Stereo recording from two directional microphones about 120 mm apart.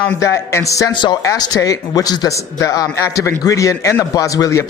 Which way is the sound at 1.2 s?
30° left (ahead or behind).